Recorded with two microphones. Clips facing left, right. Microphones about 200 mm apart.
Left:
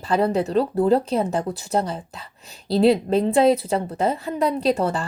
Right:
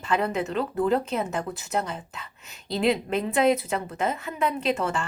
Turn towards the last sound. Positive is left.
turn(degrees=35)  # may be behind; listen again after turning